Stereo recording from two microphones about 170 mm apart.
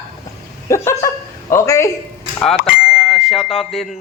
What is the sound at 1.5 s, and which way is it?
Speech, 15° left (ahead or behind).